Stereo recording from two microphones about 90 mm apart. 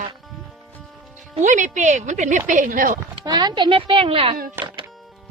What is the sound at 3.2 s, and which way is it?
Speech, 50° right (ahead or behind).